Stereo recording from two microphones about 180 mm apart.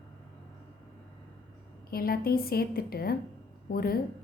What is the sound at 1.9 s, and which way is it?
A woman's voice, 55° left (ahead or behind).